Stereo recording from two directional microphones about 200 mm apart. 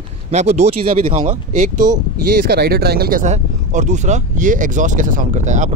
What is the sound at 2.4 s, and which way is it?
Speech, 50° right (ahead or behind).